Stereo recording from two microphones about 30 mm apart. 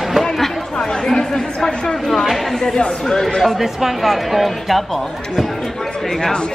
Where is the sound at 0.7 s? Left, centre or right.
Left.